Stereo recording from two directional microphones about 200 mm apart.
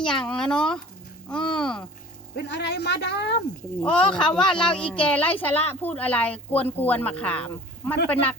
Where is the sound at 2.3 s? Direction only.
55° left (ahead or behind).